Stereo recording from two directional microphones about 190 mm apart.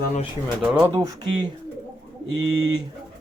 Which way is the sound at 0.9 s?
20° right (ahead or behind).